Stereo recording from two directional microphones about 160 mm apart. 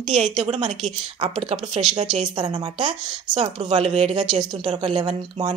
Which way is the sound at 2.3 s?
25° right (ahead or behind).